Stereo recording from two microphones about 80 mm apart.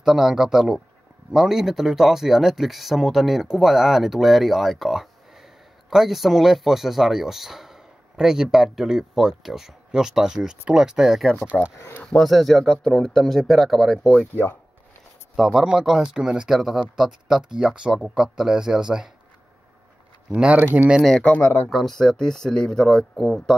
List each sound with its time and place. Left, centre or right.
0.0 s speech: centre
14.3 s speech: left
15.3 s speech: centre
20.2 s speech: centre
21.2 s speech: centre
21.6 s speech: centre